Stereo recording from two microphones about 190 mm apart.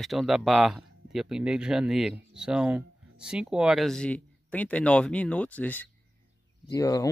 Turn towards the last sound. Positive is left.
turn(degrees=15)  # may be behind; listen again after turning